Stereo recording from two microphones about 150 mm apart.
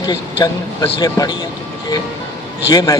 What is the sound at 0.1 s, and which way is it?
A man's voice, 25° left (ahead or behind).